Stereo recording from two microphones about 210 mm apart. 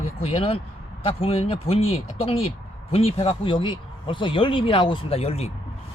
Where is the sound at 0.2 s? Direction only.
25° left (ahead or behind).